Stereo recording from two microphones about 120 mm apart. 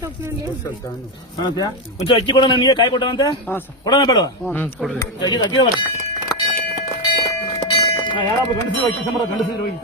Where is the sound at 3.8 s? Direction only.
35° left (ahead or behind).